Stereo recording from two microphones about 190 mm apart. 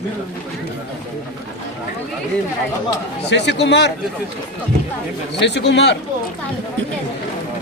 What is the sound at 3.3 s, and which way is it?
Speech, 65° left (ahead or behind).